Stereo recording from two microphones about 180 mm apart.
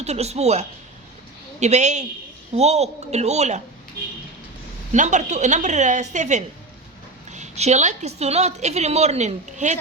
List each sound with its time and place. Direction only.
0.0 s a woman's voice: 35° right (ahead or behind)
4.9 s a woman's voice: 40° right (ahead or behind)